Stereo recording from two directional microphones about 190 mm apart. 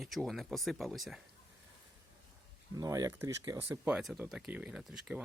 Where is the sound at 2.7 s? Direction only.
20° right (ahead or behind).